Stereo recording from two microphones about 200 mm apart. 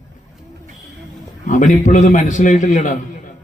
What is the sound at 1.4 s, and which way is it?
A man's voice, 40° left (ahead or behind).